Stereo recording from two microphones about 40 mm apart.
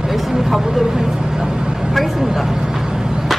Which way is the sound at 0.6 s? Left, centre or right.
Centre.